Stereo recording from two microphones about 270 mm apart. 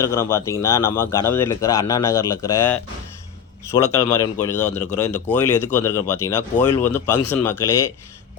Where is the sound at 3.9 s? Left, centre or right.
Centre.